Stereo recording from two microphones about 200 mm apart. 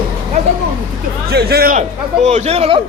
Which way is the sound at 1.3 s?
50° right (ahead or behind).